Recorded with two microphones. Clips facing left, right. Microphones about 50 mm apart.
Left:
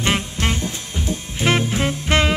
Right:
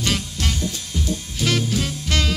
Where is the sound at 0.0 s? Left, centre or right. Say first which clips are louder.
Left 4 dB; left.